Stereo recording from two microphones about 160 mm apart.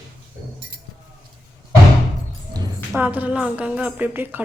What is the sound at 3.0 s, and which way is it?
A woman's voice, 10° right (ahead or behind).